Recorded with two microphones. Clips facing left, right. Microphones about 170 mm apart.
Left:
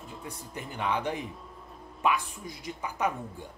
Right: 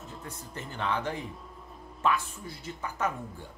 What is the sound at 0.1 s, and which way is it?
A man's voice, 10° left (ahead or behind).